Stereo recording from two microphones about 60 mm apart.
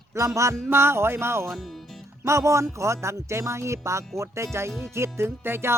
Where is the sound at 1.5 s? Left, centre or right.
Centre.